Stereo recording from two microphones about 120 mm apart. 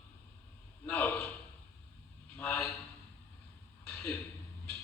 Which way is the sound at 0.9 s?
10° left (ahead or behind).